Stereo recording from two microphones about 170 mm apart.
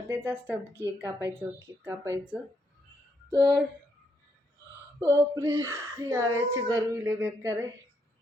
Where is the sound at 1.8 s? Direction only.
15° right (ahead or behind).